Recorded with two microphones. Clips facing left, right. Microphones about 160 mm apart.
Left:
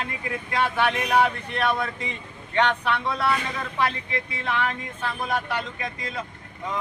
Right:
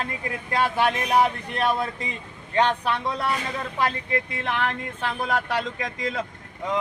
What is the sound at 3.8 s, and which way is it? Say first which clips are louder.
Speech: right 1 dB; 50° right (ahead or behind).